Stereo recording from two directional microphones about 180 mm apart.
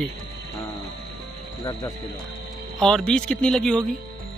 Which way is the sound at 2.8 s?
5° left (ahead or behind).